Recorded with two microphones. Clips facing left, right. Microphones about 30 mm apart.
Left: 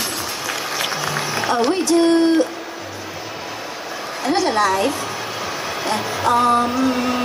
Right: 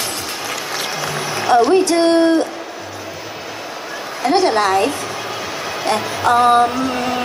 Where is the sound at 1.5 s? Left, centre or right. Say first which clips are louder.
Right 5 dB; right.